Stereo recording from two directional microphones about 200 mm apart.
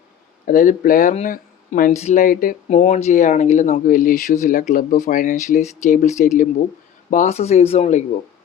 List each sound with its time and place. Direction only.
0.5 s speech: 40° left (ahead or behind)